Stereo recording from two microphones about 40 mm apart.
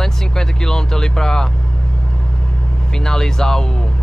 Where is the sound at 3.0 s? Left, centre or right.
Centre.